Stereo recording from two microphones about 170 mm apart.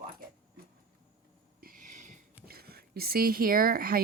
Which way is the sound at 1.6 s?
50° right (ahead or behind).